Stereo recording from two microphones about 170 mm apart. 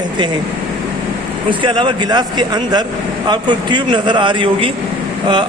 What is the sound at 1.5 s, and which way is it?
A man's voice, 30° right (ahead or behind).